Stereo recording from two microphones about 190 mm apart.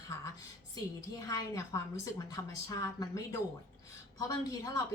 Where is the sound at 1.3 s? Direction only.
15° left (ahead or behind).